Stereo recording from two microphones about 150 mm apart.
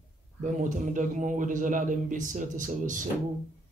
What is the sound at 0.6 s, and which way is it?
Speech, 55° right (ahead or behind).